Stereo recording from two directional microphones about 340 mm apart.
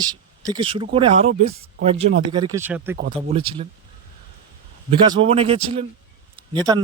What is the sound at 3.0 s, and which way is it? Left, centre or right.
Speech, centre.